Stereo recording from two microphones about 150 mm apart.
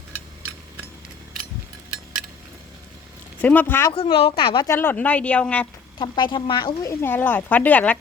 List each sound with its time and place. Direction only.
3.4 s speech: 10° left (ahead or behind)
3.9 s speech: 40° left (ahead or behind)
4.6 s speech: 15° left (ahead or behind)
6.0 s speech: 30° left (ahead or behind)
6.9 s speech: 15° left (ahead or behind)